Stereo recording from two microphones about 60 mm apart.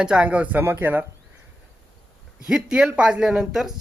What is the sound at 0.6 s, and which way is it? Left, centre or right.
Speech, right.